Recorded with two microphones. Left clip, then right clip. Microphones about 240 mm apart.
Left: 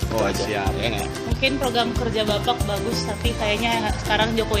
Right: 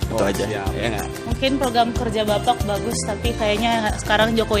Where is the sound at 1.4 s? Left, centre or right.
Right.